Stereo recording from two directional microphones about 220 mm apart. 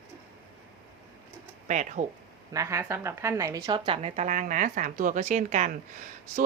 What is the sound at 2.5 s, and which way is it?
A woman's voice, 10° right (ahead or behind).